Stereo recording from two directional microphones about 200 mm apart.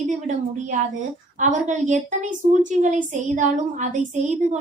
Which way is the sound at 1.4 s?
35° right (ahead or behind).